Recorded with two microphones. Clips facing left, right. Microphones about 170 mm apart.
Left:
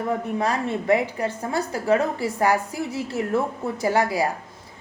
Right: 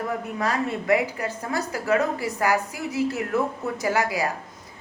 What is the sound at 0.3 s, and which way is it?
A woman's voice, 30° left (ahead or behind).